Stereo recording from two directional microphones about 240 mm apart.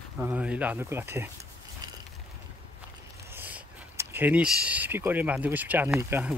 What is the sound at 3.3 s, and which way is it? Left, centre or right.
Speech, centre.